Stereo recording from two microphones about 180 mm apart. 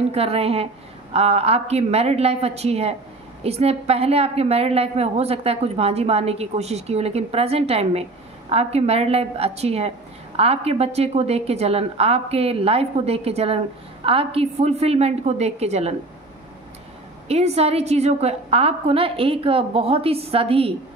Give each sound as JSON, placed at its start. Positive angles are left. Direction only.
{"t": 0.1, "sound": "a woman's voice", "side_deg": -35}
{"t": 17.3, "sound": "a woman's voice", "side_deg": -35}